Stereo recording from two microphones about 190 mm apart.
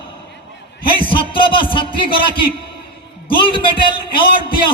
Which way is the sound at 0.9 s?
25° left (ahead or behind).